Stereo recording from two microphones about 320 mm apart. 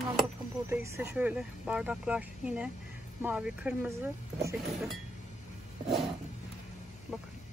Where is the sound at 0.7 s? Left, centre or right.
Centre.